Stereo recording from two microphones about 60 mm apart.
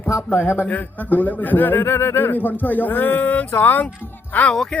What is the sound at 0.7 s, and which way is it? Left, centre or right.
Speech, left.